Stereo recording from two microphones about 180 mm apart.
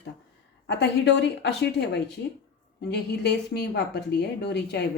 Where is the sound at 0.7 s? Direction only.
70° left (ahead or behind).